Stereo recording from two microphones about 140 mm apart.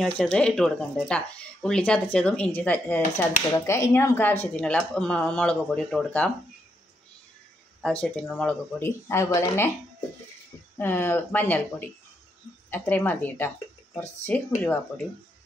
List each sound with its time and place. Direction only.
0.0 s speech: 5° left (ahead or behind)
7.8 s speech: 10° left (ahead or behind)
8.7 s speech: 20° left (ahead or behind)
10.8 s speech: 15° left (ahead or behind)